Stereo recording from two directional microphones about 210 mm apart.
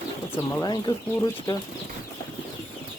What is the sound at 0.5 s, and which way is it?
Speech, 15° left (ahead or behind).